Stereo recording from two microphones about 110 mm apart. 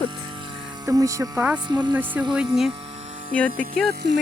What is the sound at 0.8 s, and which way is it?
Speech, 30° right (ahead or behind).